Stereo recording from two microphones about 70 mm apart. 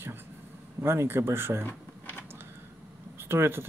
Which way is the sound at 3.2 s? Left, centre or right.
Right.